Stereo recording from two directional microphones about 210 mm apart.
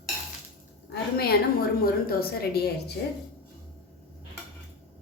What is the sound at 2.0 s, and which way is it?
Speech, 45° left (ahead or behind).